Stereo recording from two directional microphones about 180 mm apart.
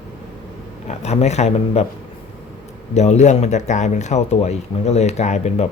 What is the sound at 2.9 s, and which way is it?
Speech, 40° left (ahead or behind).